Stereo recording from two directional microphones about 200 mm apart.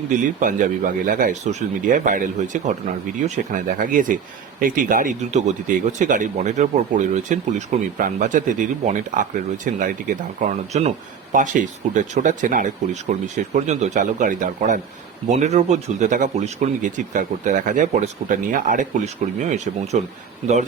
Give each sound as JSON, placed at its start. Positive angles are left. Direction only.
{"t": 0.1, "sound": "speech", "side_deg": -40}